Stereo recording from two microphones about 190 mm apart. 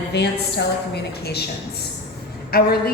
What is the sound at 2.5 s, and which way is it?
Speech, 55° left (ahead or behind).